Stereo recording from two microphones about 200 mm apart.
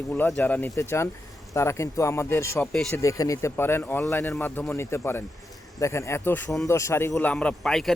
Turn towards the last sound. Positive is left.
turn(degrees=5)  # may be behind; listen again after turning